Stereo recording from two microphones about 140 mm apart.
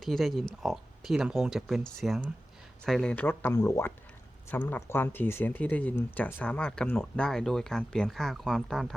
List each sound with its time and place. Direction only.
0.0 s speech: centre (ahead or behind)